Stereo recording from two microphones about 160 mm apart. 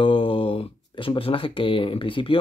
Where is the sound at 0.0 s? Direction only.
35° left (ahead or behind).